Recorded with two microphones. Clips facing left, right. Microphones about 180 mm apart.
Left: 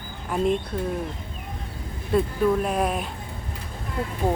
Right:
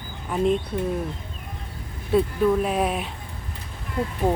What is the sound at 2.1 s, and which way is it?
Speech, 5° right (ahead or behind).